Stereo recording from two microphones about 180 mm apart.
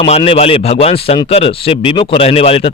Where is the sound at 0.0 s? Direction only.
30° left (ahead or behind).